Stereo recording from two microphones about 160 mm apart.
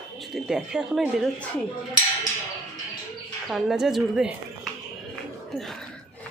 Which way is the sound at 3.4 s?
Centre (ahead or behind).